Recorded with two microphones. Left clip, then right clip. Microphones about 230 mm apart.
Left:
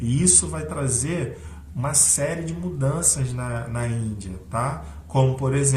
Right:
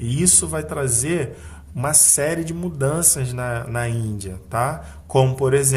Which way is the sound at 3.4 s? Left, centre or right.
Right.